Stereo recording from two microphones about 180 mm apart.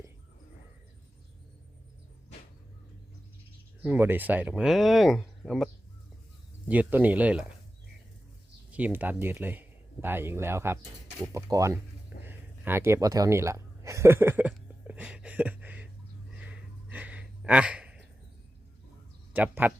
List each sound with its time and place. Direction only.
3.8 s speech: 10° right (ahead or behind)
6.7 s speech: 10° right (ahead or behind)
8.7 s speech: 10° right (ahead or behind)
12.2 s a sound: 10° right (ahead or behind)
19.3 s speech: 10° right (ahead or behind)